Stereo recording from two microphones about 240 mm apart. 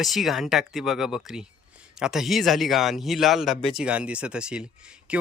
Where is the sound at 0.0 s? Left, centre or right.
Centre.